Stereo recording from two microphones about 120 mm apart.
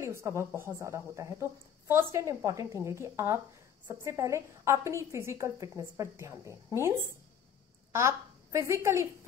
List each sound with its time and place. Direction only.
0.0 s a woman's voice: 25° right (ahead or behind)
7.9 s a woman's voice: 25° right (ahead or behind)